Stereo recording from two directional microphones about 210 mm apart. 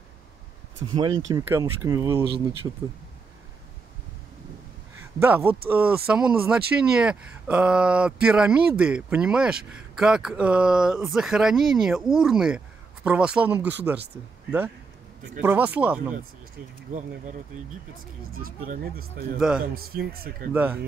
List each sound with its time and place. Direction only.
0.9 s speech: 20° right (ahead or behind)
5.2 s speech: 10° right (ahead or behind)
15.4 s speech: 10° right (ahead or behind)
16.9 s speech: 35° right (ahead or behind)
18.3 s speech: 45° right (ahead or behind)
20.5 s speech: 10° right (ahead or behind)